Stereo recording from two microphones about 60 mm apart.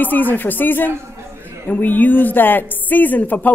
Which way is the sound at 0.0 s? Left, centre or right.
Left.